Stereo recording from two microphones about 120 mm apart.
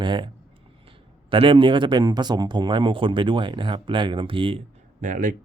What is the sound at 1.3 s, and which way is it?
Speech, 45° right (ahead or behind).